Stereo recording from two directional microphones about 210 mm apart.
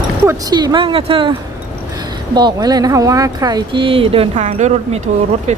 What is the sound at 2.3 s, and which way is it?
Speech, 20° right (ahead or behind).